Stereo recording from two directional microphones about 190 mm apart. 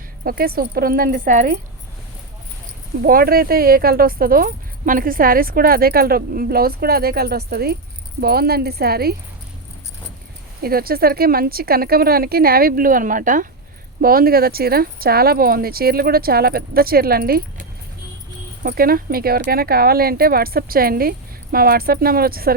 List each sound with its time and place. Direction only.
0.3 s speech: 50° right (ahead or behind)
3.0 s speech: 50° right (ahead or behind)
10.6 s speech: 50° right (ahead or behind)